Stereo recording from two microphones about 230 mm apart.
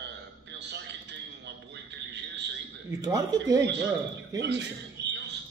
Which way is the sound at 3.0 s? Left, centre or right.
Centre.